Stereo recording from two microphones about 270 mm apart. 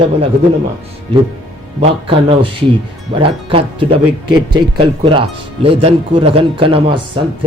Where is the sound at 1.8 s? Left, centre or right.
Right.